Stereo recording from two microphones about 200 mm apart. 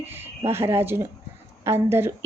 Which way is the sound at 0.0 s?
10° right (ahead or behind).